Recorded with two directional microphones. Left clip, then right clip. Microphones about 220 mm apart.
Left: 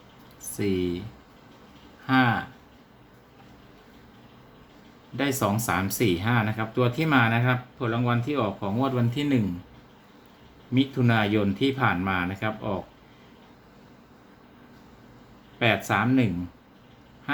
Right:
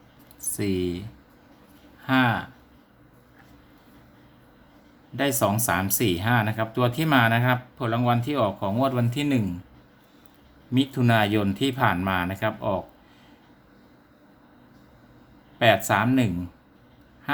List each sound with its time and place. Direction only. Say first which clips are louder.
0.5 s speech: even; 20° right (ahead or behind)
2.0 s speech: even; 20° right (ahead or behind)
5.1 s speech: right 2 dB; 20° right (ahead or behind)
10.8 s speech: right 2 dB; 25° right (ahead or behind)
15.5 s speech: right 4 dB; 25° right (ahead or behind)